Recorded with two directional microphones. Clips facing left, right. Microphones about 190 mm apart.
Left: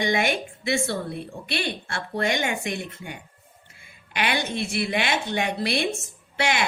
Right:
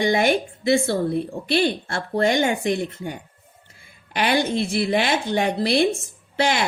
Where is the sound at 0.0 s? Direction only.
40° right (ahead or behind).